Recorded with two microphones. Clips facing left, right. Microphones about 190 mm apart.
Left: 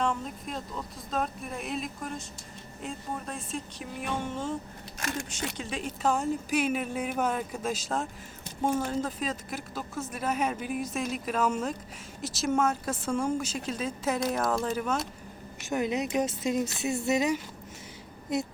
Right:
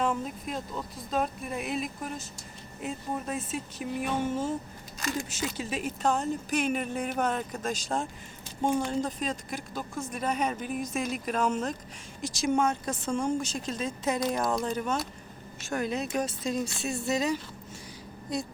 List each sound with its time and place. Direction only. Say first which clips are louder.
0.0 s speech: right 1 dB; 5° right (ahead or behind)
6.0 s speech: left 1 dB; 5° left (ahead or behind)
15.6 s speech: left 2 dB; 20° left (ahead or behind)